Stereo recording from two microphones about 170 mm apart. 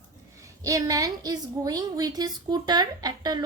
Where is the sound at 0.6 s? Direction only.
20° right (ahead or behind).